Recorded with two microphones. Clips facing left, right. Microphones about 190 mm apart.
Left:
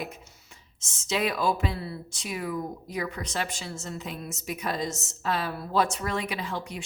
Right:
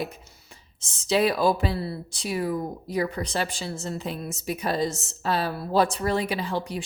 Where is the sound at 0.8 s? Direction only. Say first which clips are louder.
Right 6 dB; 35° right (ahead or behind).